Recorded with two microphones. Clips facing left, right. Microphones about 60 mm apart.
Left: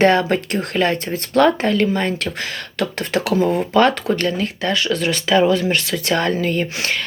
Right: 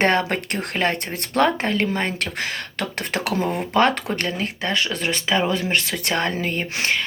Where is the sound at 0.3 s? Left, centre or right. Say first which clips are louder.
Left 5 dB; right.